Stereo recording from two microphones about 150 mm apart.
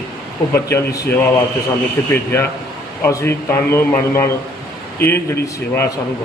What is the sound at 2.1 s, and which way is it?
A man's voice, 15° left (ahead or behind).